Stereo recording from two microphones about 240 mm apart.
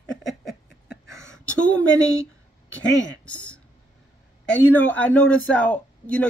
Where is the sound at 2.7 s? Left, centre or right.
Left.